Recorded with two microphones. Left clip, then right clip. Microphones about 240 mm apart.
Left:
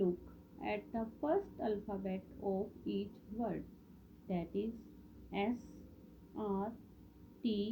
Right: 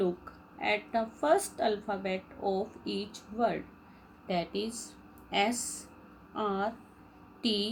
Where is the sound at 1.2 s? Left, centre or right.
Right.